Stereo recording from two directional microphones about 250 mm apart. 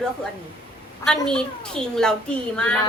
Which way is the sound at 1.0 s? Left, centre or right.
Centre.